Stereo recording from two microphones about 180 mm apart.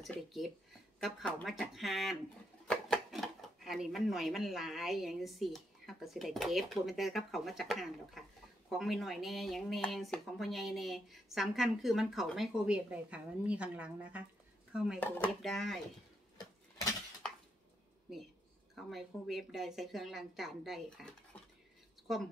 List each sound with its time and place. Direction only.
0.0 s speech: centre (ahead or behind)
15.0 s speech: 10° left (ahead or behind)
16.3 s a sound: 20° left (ahead or behind)
18.9 s speech: centre (ahead or behind)